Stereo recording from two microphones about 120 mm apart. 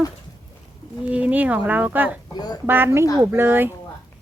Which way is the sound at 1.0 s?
10° right (ahead or behind).